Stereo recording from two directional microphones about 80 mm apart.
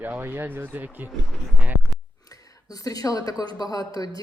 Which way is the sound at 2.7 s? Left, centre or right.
Left.